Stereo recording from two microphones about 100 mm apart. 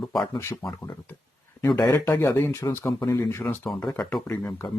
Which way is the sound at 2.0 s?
20° left (ahead or behind).